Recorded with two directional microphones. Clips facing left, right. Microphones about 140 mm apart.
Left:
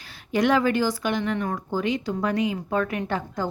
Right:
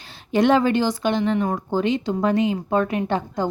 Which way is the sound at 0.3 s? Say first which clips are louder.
Right 4 dB; 25° right (ahead or behind).